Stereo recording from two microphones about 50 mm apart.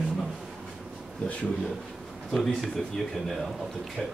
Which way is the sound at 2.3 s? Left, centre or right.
Centre.